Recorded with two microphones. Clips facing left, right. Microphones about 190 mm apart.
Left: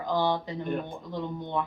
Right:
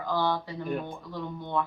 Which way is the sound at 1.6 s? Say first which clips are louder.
Right 1 dB; 20° left (ahead or behind).